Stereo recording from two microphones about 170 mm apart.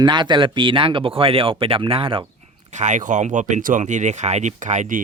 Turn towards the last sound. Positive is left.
turn(degrees=-50)  # may be behind; listen again after turning